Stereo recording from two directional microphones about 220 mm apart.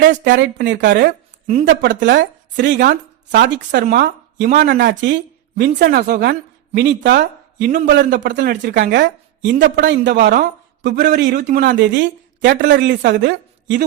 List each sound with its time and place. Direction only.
0.0 s speech: 50° right (ahead or behind)
1.5 s speech: 30° right (ahead or behind)
1.7 s speech: 55° right (ahead or behind)